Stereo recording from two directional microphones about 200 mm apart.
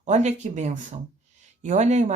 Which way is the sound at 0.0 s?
35° right (ahead or behind).